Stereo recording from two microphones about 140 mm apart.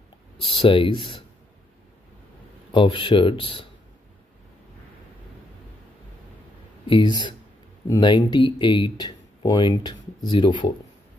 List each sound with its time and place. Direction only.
0.4 s speech: 40° left (ahead or behind)
2.7 s speech: 35° left (ahead or behind)
6.9 s speech: 35° left (ahead or behind)